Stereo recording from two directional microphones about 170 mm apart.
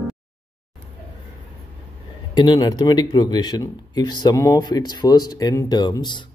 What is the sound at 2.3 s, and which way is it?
Speech, 25° left (ahead or behind).